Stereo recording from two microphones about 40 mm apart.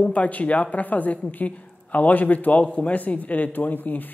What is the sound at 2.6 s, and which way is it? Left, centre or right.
A woman's voice, left.